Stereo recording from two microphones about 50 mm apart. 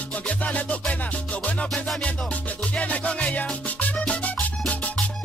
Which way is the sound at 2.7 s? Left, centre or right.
Left.